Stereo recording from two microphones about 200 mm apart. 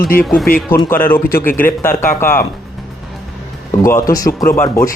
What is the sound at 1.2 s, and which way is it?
Speech, 45° left (ahead or behind).